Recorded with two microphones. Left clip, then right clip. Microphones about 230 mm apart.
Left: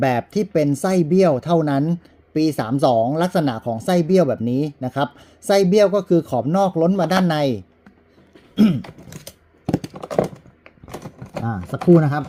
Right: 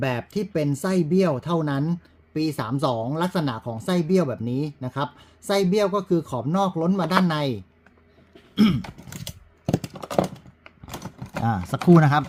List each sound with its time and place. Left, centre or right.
0.0 s speech: centre
8.5 s throat clearing: centre
8.8 s typing: right
10.6 s a sound: right
11.7 s speech: centre